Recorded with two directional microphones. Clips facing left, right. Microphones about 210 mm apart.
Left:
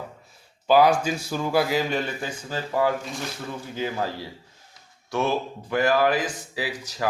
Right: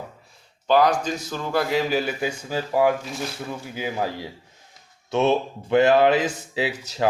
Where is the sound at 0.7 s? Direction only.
10° left (ahead or behind).